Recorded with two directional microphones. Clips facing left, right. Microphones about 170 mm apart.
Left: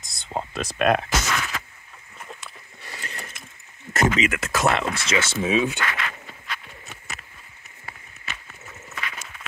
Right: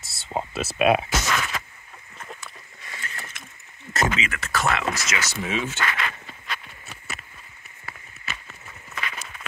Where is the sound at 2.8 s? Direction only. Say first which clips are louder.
Left 1 dB; 35° left (ahead or behind).